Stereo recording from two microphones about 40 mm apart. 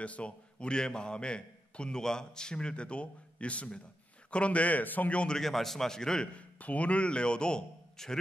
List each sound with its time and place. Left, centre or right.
0.0 s a man's voice: left
5.1 s a man's voice: left
5.4 s a man's voice: centre
6.3 s a man's voice: left; by 8.2 s centre